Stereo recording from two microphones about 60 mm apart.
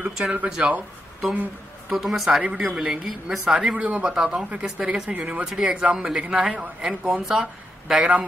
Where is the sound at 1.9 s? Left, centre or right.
Centre.